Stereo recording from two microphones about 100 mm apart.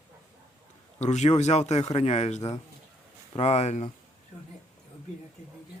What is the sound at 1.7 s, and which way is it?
Speech, 90° left.